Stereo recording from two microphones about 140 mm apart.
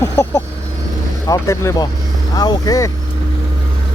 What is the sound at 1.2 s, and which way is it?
Speech, 20° left (ahead or behind).